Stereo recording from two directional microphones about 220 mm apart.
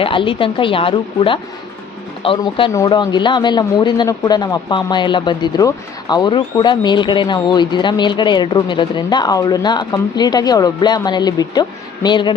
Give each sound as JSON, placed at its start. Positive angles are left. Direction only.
{"t": 0.0, "sound": "speech", "side_deg": 25}